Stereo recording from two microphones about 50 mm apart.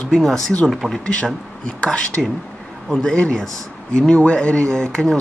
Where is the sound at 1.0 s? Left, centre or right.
Left.